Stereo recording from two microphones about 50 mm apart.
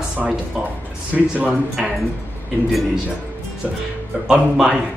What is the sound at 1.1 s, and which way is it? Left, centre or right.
Speech, right.